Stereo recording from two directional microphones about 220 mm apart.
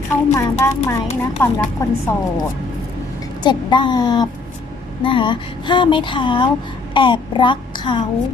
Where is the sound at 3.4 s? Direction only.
20° left (ahead or behind).